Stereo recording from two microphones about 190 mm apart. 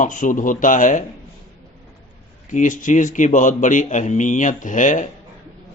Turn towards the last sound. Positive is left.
turn(degrees=40)  # may be behind; listen again after turning